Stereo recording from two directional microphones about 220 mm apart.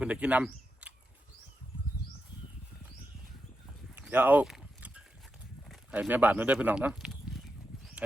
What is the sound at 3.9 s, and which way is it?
Livestock, 10° right (ahead or behind).